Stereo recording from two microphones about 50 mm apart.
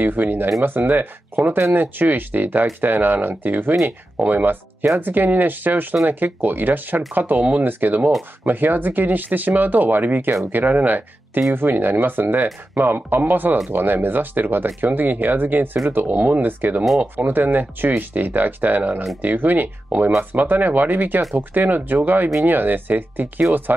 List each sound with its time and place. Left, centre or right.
0.0 s speech: right